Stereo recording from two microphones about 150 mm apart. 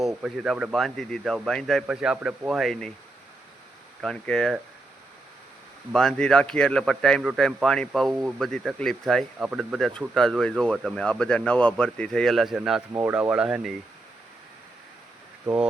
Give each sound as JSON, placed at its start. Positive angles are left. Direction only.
{"t": 0.2, "sound": "speech", "side_deg": -5}
{"t": 4.0, "sound": "speech", "side_deg": 5}
{"t": 5.9, "sound": "speech", "side_deg": 5}
{"t": 12.9, "sound": "speech", "side_deg": -20}
{"t": 13.1, "sound": "speech", "side_deg": -5}